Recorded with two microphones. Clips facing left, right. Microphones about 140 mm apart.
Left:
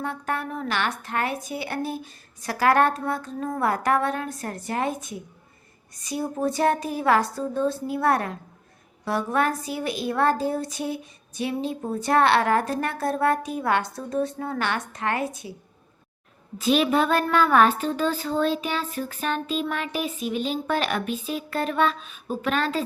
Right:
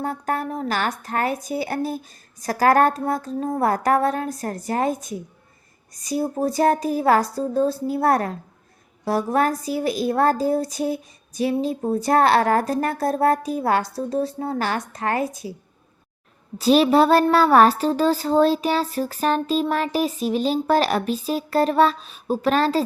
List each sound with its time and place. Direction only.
0.0 s a woman's voice: 40° right (ahead or behind)
16.6 s a woman's voice: 35° right (ahead or behind)